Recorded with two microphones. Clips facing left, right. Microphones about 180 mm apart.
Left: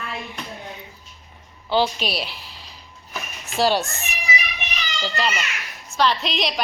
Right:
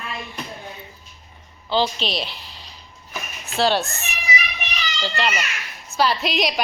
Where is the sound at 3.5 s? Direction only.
10° left (ahead or behind).